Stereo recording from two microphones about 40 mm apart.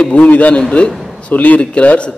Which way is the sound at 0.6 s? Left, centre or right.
Left.